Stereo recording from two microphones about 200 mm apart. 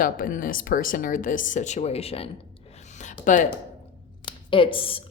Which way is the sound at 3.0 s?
40° left (ahead or behind).